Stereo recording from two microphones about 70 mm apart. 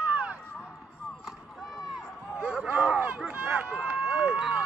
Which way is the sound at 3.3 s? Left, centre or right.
Right.